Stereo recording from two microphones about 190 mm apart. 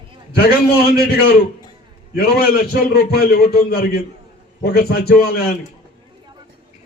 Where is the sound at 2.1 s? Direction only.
55° left (ahead or behind).